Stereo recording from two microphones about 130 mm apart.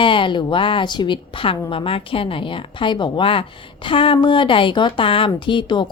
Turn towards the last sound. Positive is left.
turn(degrees=40)  # may be behind; listen again after turning